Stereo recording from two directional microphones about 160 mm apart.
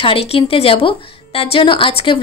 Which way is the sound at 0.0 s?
35° left (ahead or behind).